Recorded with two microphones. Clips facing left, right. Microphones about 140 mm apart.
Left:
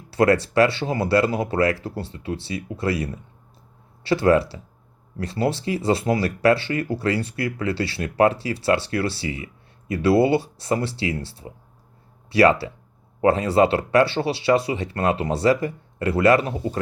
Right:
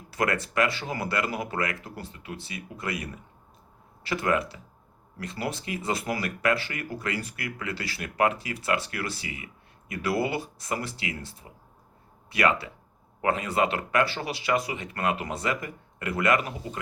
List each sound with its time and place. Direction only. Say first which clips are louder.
0.1 s speech: left 9 dB; 30° left (ahead or behind)